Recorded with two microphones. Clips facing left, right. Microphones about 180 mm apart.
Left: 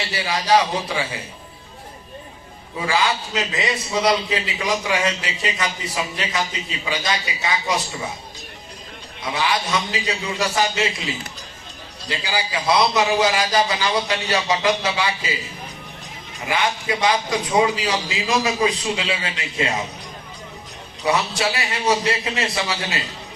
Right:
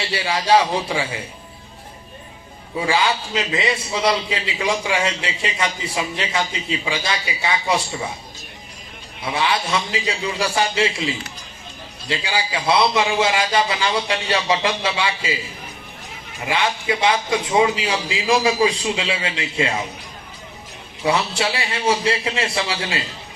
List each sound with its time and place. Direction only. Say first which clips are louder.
0.0 s a man's voice: right 2 dB; 30° right (ahead or behind)
2.8 s a man's voice: right 1 dB; 30° right (ahead or behind)
9.2 s a man's voice: right 1 dB; 30° right (ahead or behind)
16.5 s a man's voice: right 1 dB; 25° right (ahead or behind)
21.0 s a man's voice: right 1 dB; 25° right (ahead or behind)